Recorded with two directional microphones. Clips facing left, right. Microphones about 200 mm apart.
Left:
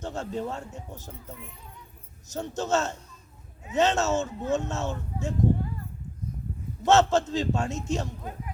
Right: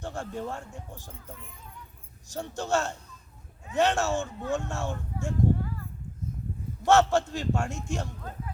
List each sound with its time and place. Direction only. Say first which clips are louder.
0.0 s speech: left 3 dB; 20° left (ahead or behind)
2.3 s speech: left 2 dB; 20° left (ahead or behind)
6.8 s speech: left 1 dB; 20° left (ahead or behind)